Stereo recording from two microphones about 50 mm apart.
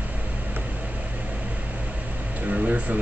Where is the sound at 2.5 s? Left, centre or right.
Right.